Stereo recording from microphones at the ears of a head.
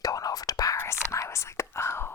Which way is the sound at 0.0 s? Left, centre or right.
Left.